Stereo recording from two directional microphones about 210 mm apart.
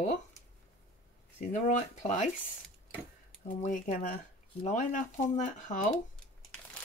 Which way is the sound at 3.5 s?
40° left (ahead or behind).